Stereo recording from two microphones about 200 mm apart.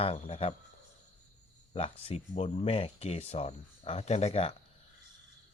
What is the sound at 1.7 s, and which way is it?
Speech, 30° left (ahead or behind).